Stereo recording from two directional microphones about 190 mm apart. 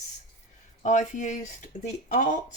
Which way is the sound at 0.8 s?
40° left (ahead or behind).